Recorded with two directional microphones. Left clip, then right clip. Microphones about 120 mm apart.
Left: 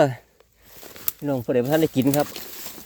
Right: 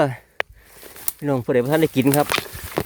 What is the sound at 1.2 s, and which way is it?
Speech, 50° right (ahead or behind).